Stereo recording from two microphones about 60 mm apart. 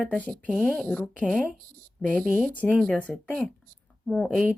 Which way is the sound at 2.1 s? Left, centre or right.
Centre.